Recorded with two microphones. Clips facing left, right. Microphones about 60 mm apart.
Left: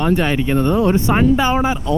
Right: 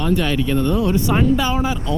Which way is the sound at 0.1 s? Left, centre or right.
Left.